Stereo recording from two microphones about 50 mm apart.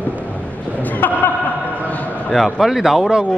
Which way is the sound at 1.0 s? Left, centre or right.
Left.